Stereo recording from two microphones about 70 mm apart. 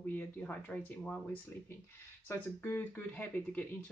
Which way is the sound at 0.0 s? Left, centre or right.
Left.